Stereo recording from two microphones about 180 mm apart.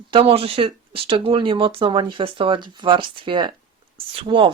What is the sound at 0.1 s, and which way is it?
Speech, 30° right (ahead or behind).